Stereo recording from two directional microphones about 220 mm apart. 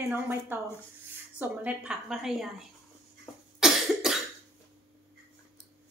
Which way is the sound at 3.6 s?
Centre (ahead or behind).